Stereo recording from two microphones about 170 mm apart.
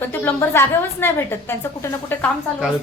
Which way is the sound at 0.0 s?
10° left (ahead or behind).